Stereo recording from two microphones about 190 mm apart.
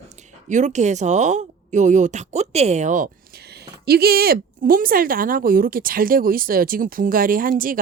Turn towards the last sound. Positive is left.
turn(degrees=-45)  # may be behind; listen again after turning